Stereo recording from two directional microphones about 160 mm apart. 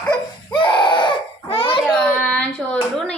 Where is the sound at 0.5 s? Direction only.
30° left (ahead or behind).